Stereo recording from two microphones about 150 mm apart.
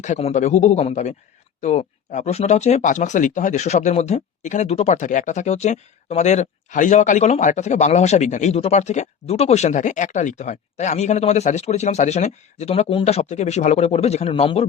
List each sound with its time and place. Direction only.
0.0 s speech: 50° left (ahead or behind)